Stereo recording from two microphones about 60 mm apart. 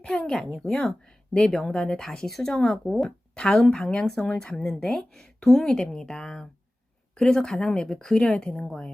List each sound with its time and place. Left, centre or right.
0.0 s speech: centre